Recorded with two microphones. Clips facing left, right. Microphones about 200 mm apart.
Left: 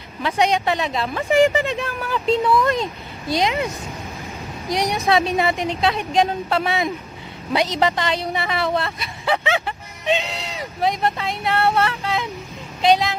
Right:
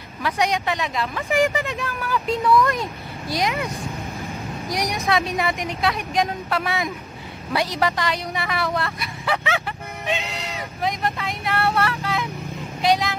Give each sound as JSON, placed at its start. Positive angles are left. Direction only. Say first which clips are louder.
{"t": 0.2, "sound": "a woman's voice", "louder": "left 3 dB", "side_deg": 25}
{"t": 4.6, "sound": "a woman's voice", "louder": "left 4 dB", "side_deg": 30}